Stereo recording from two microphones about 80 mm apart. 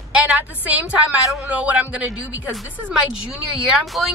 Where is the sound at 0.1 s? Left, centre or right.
Centre.